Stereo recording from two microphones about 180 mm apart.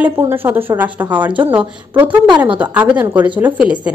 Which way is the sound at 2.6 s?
10° right (ahead or behind).